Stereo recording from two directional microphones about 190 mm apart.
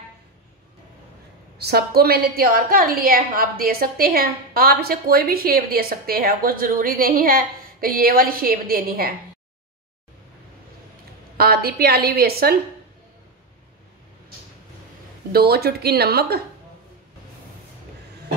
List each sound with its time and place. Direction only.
1.6 s a woman's voice: 55° right (ahead or behind)
11.3 s a woman's voice: 55° right (ahead or behind)
15.3 s speech: 55° right (ahead or behind)